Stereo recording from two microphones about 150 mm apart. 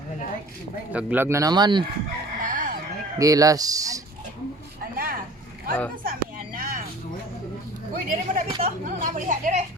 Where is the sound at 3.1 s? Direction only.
25° right (ahead or behind).